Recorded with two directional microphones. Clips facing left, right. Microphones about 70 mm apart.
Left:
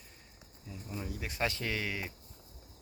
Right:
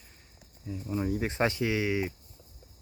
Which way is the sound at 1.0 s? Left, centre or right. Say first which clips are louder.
Right 7 dB; right.